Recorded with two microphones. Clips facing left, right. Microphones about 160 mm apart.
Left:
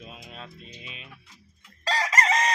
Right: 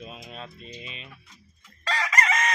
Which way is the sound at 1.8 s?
35° left (ahead or behind).